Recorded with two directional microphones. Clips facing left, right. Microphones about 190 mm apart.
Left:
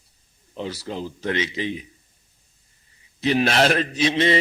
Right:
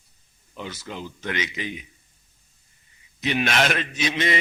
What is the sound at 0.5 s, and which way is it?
A man's voice, 35° left (ahead or behind).